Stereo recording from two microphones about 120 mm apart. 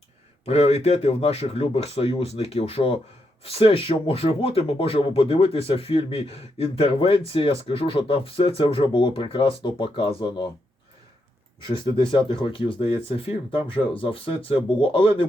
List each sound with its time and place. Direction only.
0.4 s speech: 65° left (ahead or behind); by 10.5 s 40° left (ahead or behind)
11.6 s speech: 40° left (ahead or behind)